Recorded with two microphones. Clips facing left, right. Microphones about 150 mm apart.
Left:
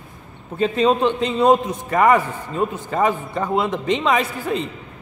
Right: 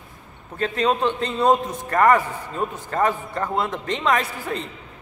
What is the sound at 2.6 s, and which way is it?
Speech, 20° left (ahead or behind).